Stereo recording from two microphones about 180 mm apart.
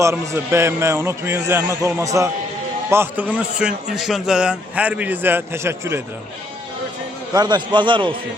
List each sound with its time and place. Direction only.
0.0 s a man's voice: 15° right (ahead or behind)
7.3 s a man's voice: 25° right (ahead or behind)